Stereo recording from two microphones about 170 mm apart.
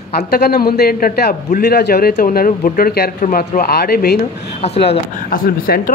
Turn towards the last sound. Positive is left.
turn(degrees=60)  # may be behind; listen again after turning